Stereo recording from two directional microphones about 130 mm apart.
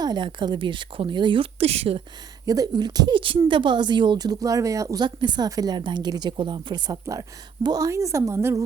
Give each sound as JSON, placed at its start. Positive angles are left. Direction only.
{"t": 0.0, "sound": "speech", "side_deg": -35}
{"t": 2.5, "sound": "speech", "side_deg": -30}